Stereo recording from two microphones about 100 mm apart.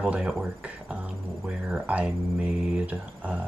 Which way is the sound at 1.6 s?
15° right (ahead or behind).